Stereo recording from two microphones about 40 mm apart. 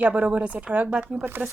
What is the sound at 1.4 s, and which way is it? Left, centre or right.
Speech, right.